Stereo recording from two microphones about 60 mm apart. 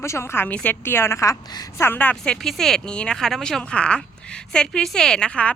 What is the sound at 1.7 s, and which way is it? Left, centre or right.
Speech, left.